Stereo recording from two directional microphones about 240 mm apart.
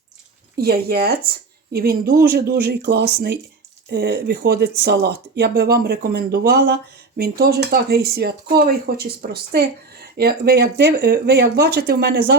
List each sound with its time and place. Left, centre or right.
0.5 s speech: right